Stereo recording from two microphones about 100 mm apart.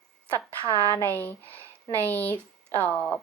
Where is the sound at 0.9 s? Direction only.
20° left (ahead or behind).